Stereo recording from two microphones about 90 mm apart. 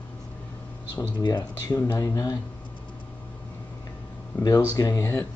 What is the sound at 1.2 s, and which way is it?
Speech, 45° left (ahead or behind).